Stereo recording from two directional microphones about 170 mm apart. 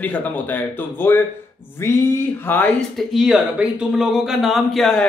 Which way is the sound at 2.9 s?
Centre (ahead or behind).